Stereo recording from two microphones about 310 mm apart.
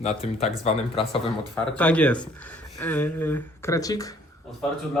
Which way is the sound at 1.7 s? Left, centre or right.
Centre.